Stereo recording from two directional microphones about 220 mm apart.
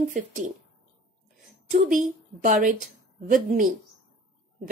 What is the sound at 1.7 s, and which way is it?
A woman's voice, 35° right (ahead or behind).